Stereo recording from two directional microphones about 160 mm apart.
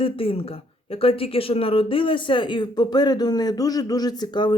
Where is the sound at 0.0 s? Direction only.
35° left (ahead or behind).